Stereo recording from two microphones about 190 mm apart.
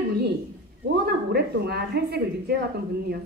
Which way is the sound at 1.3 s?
60° right (ahead or behind).